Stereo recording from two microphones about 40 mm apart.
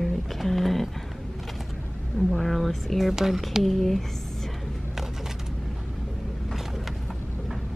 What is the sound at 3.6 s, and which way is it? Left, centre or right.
Speech, centre.